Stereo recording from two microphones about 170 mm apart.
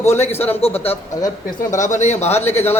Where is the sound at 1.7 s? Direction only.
45° left (ahead or behind).